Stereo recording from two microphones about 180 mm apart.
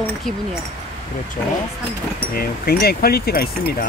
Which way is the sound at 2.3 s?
60° left (ahead or behind).